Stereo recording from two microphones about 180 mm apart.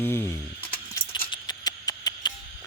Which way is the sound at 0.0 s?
10° left (ahead or behind).